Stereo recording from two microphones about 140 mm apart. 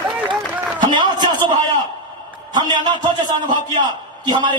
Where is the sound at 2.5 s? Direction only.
30° right (ahead or behind).